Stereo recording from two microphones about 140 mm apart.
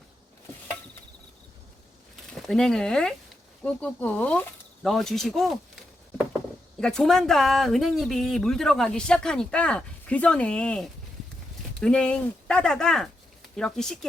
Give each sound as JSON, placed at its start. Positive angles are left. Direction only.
{"t": 2.5, "sound": "speech", "side_deg": 5}
{"t": 6.7, "sound": "speech", "side_deg": 5}